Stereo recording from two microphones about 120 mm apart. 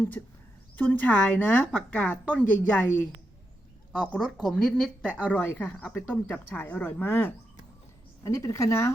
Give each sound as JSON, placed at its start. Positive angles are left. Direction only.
{"t": 0.2, "sound": "speech", "side_deg": 20}
{"t": 4.4, "sound": "a woman's voice", "side_deg": 5}